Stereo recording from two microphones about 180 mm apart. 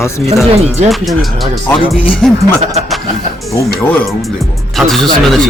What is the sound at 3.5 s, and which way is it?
Speech, 10° left (ahead or behind).